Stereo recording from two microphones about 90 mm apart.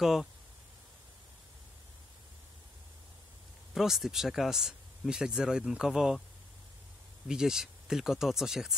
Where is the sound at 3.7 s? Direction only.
5° right (ahead or behind).